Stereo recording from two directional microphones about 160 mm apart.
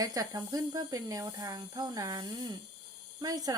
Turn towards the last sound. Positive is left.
turn(degrees=-20)  # may be behind; listen again after turning